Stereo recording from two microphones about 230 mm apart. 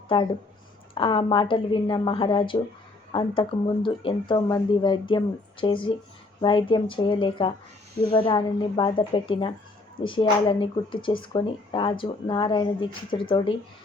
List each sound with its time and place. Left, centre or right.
0.1 s speech: left